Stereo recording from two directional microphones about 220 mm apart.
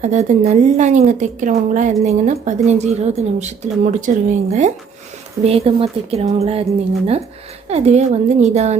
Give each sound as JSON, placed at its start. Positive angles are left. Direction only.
{"t": 0.0, "sound": "a woman's voice", "side_deg": -30}
{"t": 7.7, "sound": "speech", "side_deg": -30}